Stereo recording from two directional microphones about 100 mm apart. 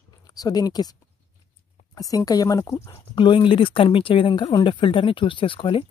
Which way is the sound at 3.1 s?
55° left (ahead or behind).